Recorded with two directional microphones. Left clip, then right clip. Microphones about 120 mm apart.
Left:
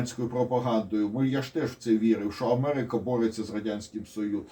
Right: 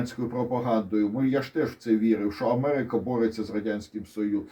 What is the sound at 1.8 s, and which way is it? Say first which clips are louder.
Speech: left 1 dB; 50° right (ahead or behind).